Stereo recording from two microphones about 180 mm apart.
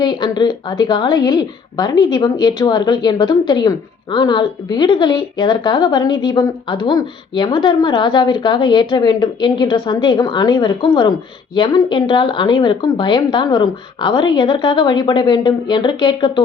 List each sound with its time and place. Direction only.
0.0 s a woman's voice: 25° left (ahead or behind)